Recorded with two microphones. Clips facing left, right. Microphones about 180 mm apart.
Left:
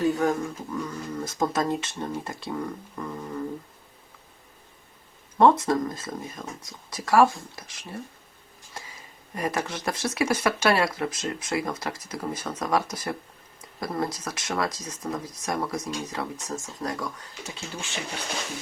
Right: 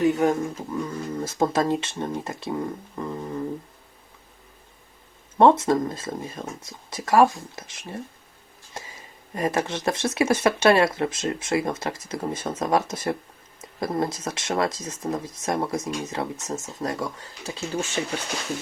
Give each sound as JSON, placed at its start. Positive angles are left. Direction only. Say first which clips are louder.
{"t": 0.0, "sound": "speech", "louder": "right 3 dB", "side_deg": -20}
{"t": 5.4, "sound": "speech", "louder": "right 2 dB", "side_deg": -25}